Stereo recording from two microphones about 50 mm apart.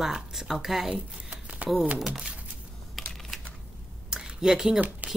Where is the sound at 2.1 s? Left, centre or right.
Centre.